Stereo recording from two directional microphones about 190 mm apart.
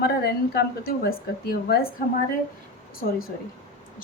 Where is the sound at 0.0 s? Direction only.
55° left (ahead or behind).